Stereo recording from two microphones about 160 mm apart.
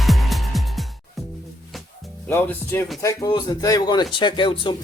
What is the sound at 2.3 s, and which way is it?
Speech, 15° left (ahead or behind).